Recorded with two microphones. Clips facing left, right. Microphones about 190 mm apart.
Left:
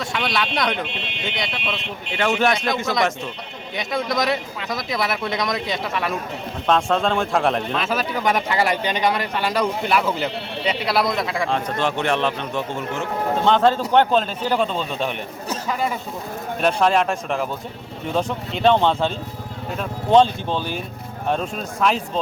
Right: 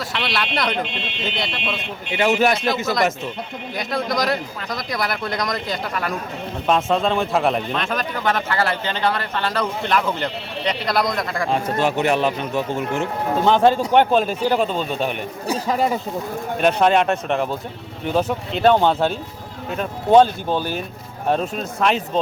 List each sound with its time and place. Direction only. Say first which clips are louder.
0.0 s a man's voice: left 1 dB; centre (ahead or behind)
15.5 s speech: right 4 dB; 35° right (ahead or behind)
16.6 s speech: right 2 dB; centre (ahead or behind)